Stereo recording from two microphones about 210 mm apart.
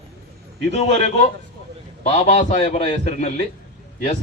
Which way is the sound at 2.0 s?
30° left (ahead or behind).